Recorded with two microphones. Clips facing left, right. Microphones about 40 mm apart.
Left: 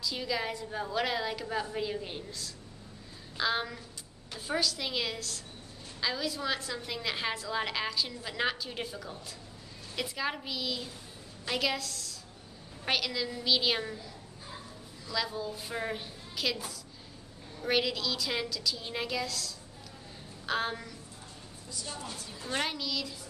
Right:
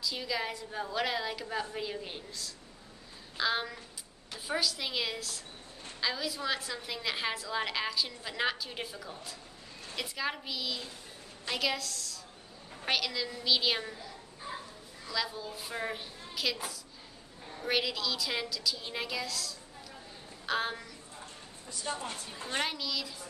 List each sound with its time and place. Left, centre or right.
0.0 s a woman's voice: centre
15.0 s a woman's voice: centre
17.6 s a woman's voice: centre
21.6 s a woman's voice: right
22.6 s a woman's voice: centre